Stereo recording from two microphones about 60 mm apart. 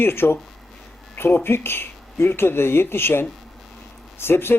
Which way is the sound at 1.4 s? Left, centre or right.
Left.